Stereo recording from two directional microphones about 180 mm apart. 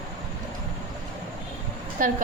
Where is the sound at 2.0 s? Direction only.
50° right (ahead or behind).